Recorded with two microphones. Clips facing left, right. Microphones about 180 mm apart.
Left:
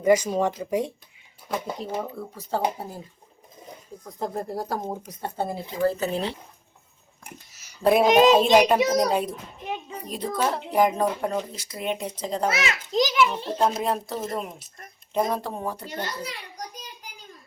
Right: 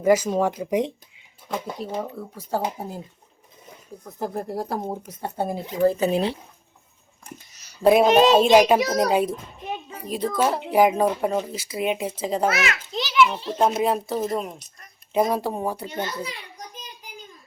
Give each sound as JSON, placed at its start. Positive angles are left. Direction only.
{"t": 0.0, "sound": "speech", "side_deg": -5}
{"t": 1.8, "sound": "speech", "side_deg": -5}
{"t": 4.0, "sound": "speech", "side_deg": 0}
{"t": 7.3, "sound": "a sound", "side_deg": 5}
{"t": 7.8, "sound": "speech", "side_deg": 0}
{"t": 8.0, "sound": "speech", "side_deg": 10}
{"t": 8.4, "sound": "speech", "side_deg": -5}
{"t": 12.5, "sound": "a child's voice", "side_deg": 25}
{"t": 13.0, "sound": "a child's voice", "side_deg": 40}
{"t": 13.6, "sound": "speech", "side_deg": -5}